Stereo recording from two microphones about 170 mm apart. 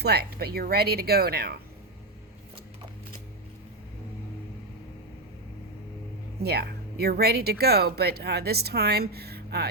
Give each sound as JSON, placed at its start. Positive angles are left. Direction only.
{"t": 0.0, "sound": "speech", "side_deg": -70}
{"t": 6.4, "sound": "speech", "side_deg": -70}